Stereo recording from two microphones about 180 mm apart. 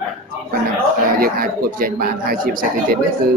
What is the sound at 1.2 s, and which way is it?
Speech, 55° right (ahead or behind).